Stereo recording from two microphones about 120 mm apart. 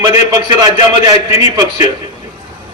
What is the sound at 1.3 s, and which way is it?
Speech, 35° right (ahead or behind).